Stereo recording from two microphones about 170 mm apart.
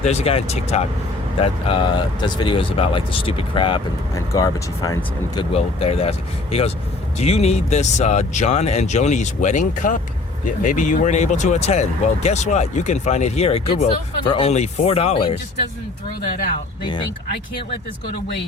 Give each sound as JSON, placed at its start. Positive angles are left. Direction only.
{"t": 0.0, "sound": "speech", "side_deg": 40}
{"t": 16.8, "sound": "speech", "side_deg": 25}